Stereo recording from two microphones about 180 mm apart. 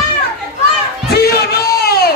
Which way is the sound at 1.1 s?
60° left (ahead or behind).